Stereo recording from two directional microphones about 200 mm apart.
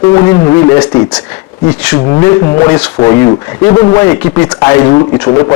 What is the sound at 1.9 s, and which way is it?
A man's voice, 15° left (ahead or behind).